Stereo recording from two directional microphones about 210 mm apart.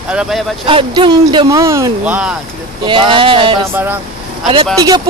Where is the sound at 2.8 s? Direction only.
25° right (ahead or behind).